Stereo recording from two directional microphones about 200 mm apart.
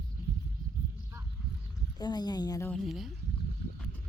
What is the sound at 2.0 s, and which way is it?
Speech, 20° left (ahead or behind).